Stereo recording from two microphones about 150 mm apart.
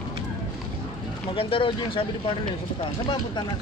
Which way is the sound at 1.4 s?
35° left (ahead or behind).